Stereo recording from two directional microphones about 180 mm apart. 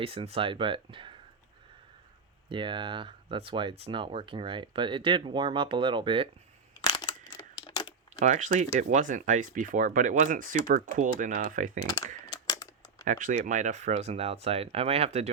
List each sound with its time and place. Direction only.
0.0 s speech: 30° right (ahead or behind)
2.5 s speech: 25° right (ahead or behind)
6.8 s crumpling: 25° left (ahead or behind)
8.2 s speech: 45° right (ahead or behind)
12.3 s a sound: 20° left (ahead or behind)
13.1 s speech: 45° right (ahead or behind)